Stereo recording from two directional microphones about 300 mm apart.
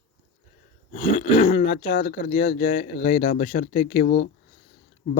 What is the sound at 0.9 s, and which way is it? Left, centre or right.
Speech, centre.